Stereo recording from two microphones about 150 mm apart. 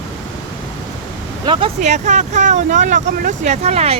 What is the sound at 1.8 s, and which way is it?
Speech, 50° right (ahead or behind).